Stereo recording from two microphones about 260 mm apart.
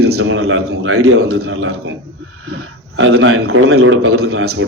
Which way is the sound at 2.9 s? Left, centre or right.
Right.